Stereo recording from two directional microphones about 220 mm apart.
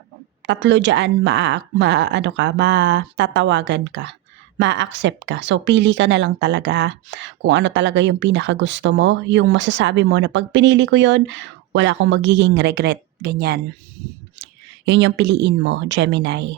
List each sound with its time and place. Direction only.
0.4 s speech: 55° right (ahead or behind)
14.8 s speech: 55° right (ahead or behind)